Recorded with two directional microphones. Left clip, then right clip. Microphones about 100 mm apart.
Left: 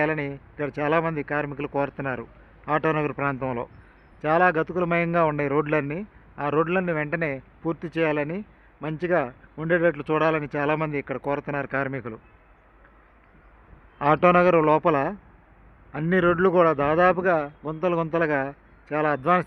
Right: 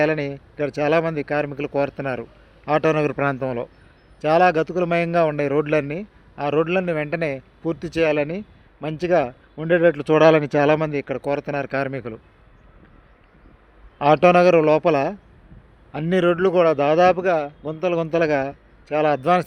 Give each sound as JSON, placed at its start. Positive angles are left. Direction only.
{"t": 0.0, "sound": "a man's voice", "side_deg": -45}
{"t": 3.3, "sound": "a man's voice", "side_deg": -35}
{"t": 10.2, "sound": "speech", "side_deg": -90}
{"t": 10.8, "sound": "speech", "side_deg": -40}
{"t": 14.0, "sound": "a man's voice", "side_deg": -35}